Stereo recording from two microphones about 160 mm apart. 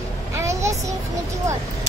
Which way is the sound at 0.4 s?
20° right (ahead or behind).